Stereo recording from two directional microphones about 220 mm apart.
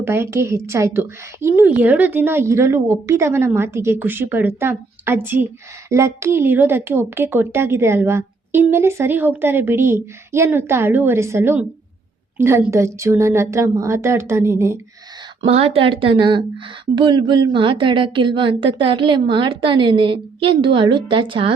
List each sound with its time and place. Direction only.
0.0 s a woman's voice: 10° right (ahead or behind)
15.4 s a woman's voice: 25° right (ahead or behind)